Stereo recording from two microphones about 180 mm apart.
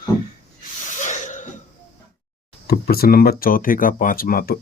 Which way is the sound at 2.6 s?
60° left (ahead or behind).